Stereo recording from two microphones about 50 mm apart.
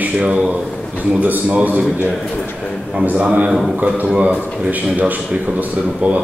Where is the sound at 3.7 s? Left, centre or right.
Right.